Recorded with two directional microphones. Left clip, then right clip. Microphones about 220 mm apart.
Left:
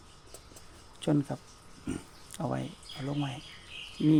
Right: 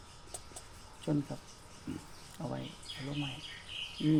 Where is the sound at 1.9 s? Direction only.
50° left (ahead or behind).